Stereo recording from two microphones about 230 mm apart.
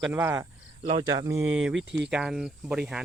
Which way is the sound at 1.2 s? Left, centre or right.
Centre.